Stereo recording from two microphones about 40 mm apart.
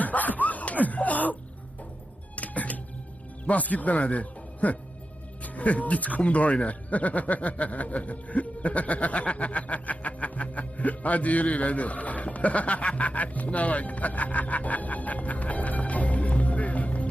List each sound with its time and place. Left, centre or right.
0.0 s a sound: left
2.3 s music: left
3.4 s speech: left